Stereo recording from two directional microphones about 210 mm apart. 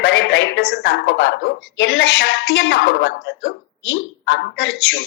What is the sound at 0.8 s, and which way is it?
Speech, 65° left (ahead or behind).